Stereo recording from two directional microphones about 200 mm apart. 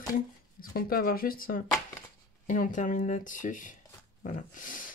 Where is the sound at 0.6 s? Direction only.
50° left (ahead or behind).